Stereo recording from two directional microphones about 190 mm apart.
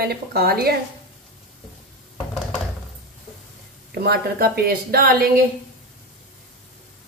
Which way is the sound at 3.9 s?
55° right (ahead or behind).